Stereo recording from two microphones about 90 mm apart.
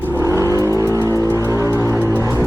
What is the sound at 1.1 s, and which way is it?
Music, 30° left (ahead or behind).